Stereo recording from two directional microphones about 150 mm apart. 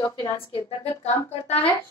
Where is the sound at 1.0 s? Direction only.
45° left (ahead or behind).